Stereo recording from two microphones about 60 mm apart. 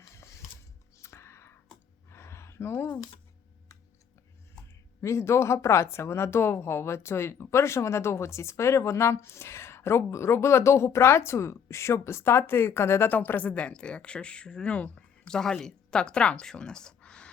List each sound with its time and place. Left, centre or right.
0.1 s music: left
2.0 s a sound: left
4.9 s speech: left
13.1 s speech: left
15.3 s speech: centre